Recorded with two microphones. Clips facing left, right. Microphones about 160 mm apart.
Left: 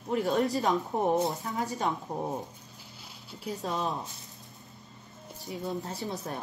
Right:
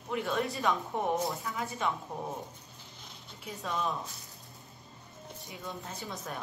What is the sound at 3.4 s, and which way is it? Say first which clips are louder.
Speech: left 3 dB; 35° left (ahead or behind).